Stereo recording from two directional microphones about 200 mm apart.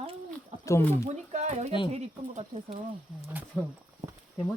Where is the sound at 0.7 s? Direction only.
10° left (ahead or behind).